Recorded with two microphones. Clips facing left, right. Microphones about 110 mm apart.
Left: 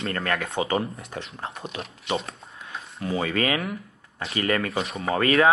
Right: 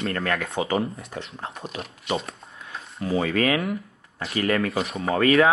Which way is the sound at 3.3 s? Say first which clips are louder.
Right 3 dB; 25° left (ahead or behind).